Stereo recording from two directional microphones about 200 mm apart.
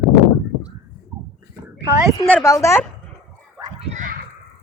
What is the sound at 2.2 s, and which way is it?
Speech, 10° left (ahead or behind).